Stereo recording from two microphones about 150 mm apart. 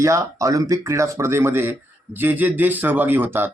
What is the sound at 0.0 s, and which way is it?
A man's voice, 20° right (ahead or behind).